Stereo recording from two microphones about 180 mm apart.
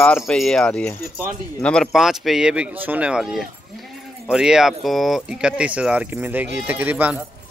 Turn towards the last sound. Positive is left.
turn(degrees=-10)  # may be behind; listen again after turning